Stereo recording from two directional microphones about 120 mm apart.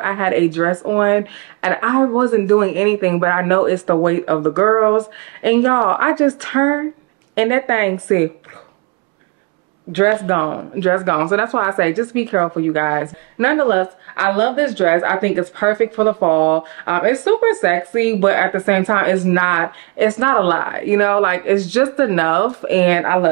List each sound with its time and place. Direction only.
0.0 s speech: 20° right (ahead or behind)
9.9 s speech: 20° right (ahead or behind)